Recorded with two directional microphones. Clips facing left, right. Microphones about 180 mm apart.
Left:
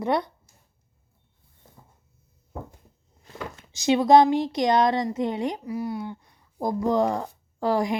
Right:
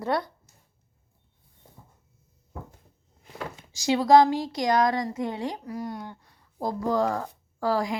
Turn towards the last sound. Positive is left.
turn(degrees=20)  # may be behind; listen again after turning